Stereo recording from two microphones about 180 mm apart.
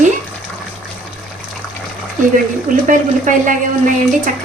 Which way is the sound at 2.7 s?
45° right (ahead or behind).